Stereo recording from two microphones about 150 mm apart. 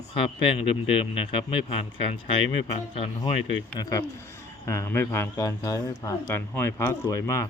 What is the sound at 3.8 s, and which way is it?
A man's voice, 25° left (ahead or behind).